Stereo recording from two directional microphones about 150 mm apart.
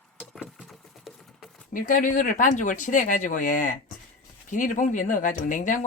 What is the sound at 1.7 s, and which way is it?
Speech, 60° left (ahead or behind).